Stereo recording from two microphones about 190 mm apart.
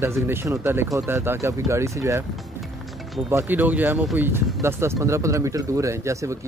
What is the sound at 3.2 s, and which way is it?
Speech, 10° right (ahead or behind).